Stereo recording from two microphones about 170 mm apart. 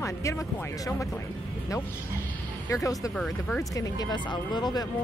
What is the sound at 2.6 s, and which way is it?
Speech, 20° left (ahead or behind).